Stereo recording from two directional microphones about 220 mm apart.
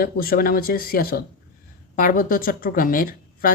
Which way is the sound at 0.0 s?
40° left (ahead or behind).